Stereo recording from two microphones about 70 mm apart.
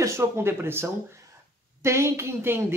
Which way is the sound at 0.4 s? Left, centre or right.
Right.